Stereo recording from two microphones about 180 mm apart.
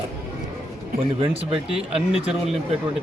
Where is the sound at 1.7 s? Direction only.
5° right (ahead or behind).